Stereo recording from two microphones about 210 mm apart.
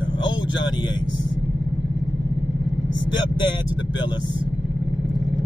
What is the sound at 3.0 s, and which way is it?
Speech, 20° left (ahead or behind).